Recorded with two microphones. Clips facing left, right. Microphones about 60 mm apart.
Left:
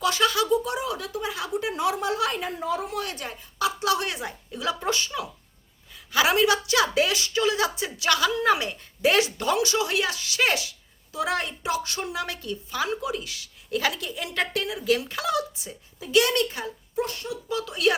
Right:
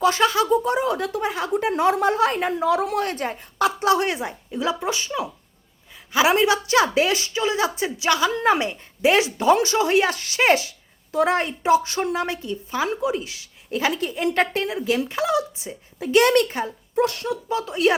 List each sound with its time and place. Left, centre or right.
0.0 s speech: right
2.4 s a woman's voice: right
3.0 s a woman's voice: right
4.8 s speech: centre
5.0 s a woman's voice: right
6.3 s a woman's voice: right
9.6 s a woman's voice: right
16.1 s a woman's voice: right
16.9 s speech: right
17.5 s a woman's voice: right